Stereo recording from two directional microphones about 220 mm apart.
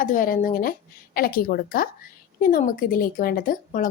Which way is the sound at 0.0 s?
40° left (ahead or behind).